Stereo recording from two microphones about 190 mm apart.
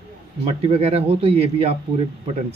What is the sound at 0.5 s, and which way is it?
Speech, 35° right (ahead or behind).